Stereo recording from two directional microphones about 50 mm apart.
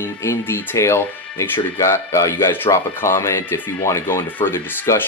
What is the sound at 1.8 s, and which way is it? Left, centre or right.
Speech, left.